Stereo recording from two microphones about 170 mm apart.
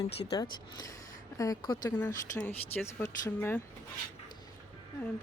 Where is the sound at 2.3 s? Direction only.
15° left (ahead or behind).